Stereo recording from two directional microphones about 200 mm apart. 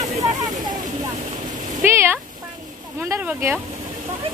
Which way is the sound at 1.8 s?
10° right (ahead or behind).